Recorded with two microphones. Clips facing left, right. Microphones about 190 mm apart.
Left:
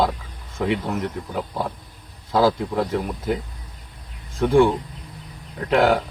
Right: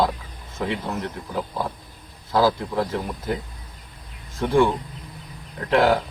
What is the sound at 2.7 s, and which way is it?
Speech, 10° left (ahead or behind).